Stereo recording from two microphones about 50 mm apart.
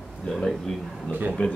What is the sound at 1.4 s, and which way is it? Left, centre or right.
Speech, left.